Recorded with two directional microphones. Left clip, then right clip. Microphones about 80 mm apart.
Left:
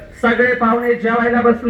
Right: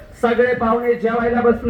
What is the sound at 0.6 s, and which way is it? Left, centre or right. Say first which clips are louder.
Speech: left 2 dB; centre.